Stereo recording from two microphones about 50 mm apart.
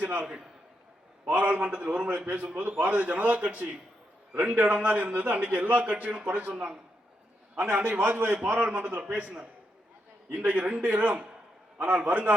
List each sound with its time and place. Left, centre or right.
0.0 s a man's voice: right
8.0 s a man's voice: right